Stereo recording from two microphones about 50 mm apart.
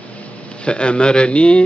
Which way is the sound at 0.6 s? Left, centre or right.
Left.